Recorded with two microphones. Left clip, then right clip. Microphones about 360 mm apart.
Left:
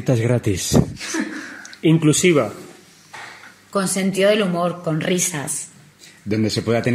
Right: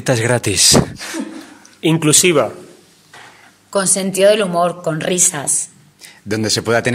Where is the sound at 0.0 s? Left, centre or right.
Right.